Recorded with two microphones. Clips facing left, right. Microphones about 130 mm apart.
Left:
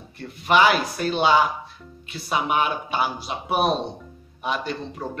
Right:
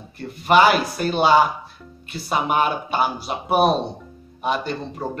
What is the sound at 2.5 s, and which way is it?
Speech, 45° right (ahead or behind).